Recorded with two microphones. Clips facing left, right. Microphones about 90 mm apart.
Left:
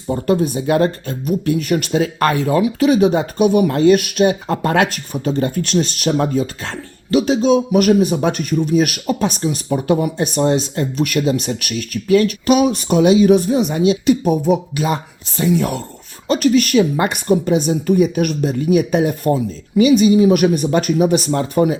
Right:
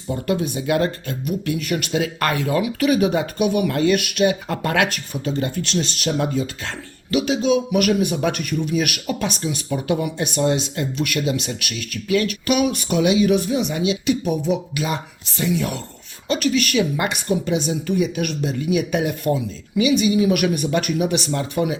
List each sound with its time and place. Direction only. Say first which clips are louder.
0.1 s a man's voice: left 6 dB; 35° left (ahead or behind)